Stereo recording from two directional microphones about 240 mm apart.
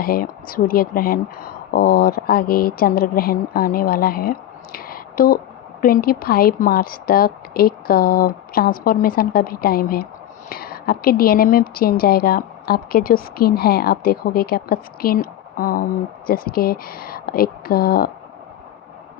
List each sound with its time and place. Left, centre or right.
0.0 s speech: left